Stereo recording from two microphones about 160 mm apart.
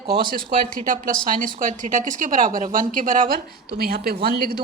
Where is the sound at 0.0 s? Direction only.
65° right (ahead or behind).